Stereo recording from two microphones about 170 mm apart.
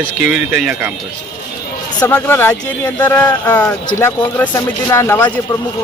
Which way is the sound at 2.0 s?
15° left (ahead or behind).